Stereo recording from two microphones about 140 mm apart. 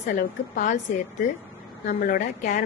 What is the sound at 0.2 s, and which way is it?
Speech, 65° left (ahead or behind).